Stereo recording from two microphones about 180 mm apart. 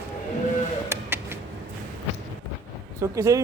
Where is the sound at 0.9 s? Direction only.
15° right (ahead or behind).